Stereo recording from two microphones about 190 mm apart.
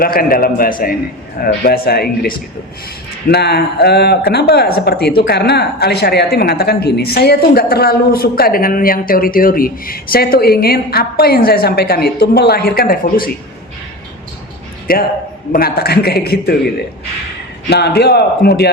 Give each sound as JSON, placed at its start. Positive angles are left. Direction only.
{"t": 0.0, "sound": "speech", "side_deg": 50}
{"t": 14.9, "sound": "a man's voice", "side_deg": 50}
{"t": 17.7, "sound": "a man's voice", "side_deg": 60}